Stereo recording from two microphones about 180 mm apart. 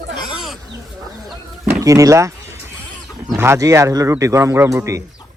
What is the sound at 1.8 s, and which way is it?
A man's voice, 20° right (ahead or behind).